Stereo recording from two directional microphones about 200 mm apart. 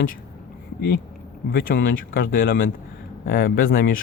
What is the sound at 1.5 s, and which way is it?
A man's voice, 50° left (ahead or behind).